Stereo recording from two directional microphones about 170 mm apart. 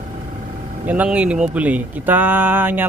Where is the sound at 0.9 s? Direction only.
10° right (ahead or behind).